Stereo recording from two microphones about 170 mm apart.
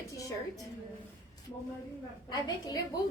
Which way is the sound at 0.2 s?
20° left (ahead or behind).